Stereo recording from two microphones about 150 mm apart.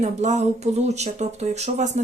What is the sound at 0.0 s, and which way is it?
A woman's voice, 50° right (ahead or behind).